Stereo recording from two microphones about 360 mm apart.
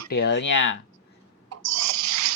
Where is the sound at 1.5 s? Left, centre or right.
Right.